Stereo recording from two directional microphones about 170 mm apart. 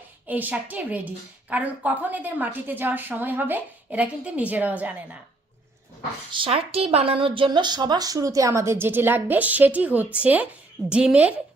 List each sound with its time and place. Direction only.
0.3 s speech: 10° right (ahead or behind)
6.3 s speech: 30° right (ahead or behind); by 11.3 s 5° right (ahead or behind)